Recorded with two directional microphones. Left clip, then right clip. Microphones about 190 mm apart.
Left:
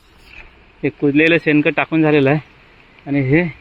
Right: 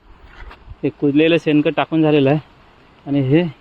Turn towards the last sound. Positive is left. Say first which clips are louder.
# even
turn(degrees=-5)  # may be behind; listen again after turning